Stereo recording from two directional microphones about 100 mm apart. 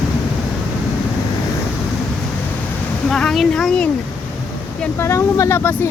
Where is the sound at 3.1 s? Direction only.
5° left (ahead or behind).